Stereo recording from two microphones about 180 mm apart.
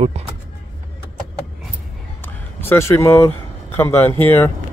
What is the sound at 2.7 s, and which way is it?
Speech, 15° left (ahead or behind).